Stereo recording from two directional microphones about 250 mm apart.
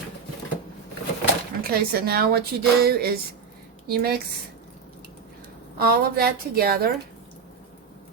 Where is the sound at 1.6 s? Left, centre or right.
Right.